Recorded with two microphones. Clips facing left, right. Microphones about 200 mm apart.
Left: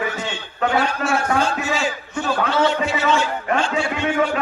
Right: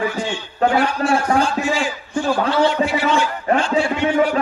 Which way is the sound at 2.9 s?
25° left (ahead or behind).